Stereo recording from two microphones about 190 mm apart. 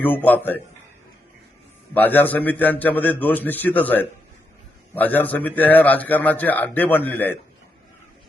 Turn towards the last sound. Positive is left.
turn(degrees=10)  # may be behind; listen again after turning